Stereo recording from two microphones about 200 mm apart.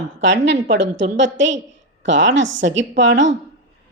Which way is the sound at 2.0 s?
65° right (ahead or behind).